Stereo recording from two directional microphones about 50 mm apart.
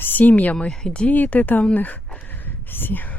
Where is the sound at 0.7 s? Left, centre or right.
Centre.